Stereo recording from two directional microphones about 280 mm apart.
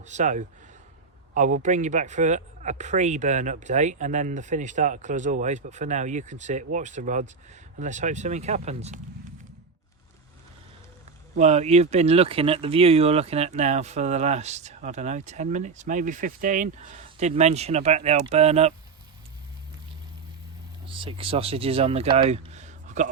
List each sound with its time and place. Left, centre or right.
0.0 s speech: right
11.3 s speech: right
20.8 s speech: centre